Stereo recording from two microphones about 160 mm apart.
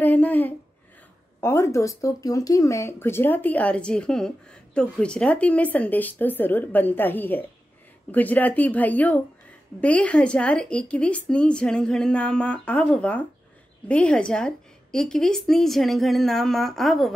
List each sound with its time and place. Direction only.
0.0 s a woman's voice: 10° left (ahead or behind)